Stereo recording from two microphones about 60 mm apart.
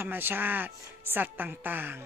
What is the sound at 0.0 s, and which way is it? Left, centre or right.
A woman's voice, right.